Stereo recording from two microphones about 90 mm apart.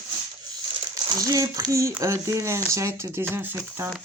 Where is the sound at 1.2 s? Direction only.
40° right (ahead or behind).